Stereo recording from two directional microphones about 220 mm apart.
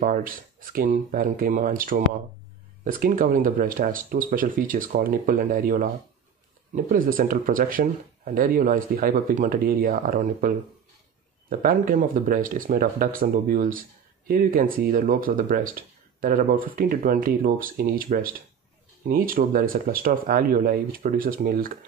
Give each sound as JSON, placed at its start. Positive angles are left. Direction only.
{"t": 0.0, "sound": "speech", "side_deg": -40}